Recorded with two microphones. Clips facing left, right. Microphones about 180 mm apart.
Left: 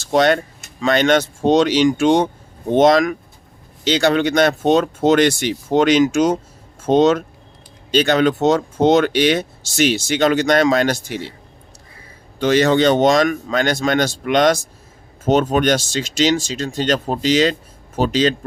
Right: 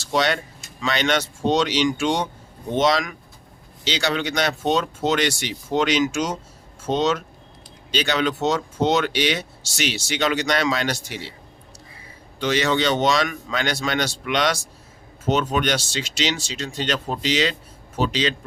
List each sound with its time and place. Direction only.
0.0 s speech: 50° left (ahead or behind)
12.4 s speech: 50° left (ahead or behind)